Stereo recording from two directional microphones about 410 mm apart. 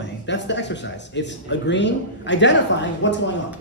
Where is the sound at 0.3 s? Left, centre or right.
Left.